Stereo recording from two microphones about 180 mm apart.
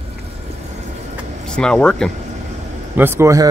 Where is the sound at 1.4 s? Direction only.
5° left (ahead or behind).